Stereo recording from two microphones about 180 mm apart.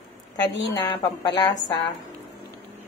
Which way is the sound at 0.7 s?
25° left (ahead or behind).